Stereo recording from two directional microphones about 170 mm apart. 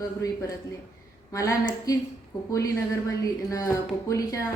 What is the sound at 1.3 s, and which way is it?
A woman's voice, 20° left (ahead or behind).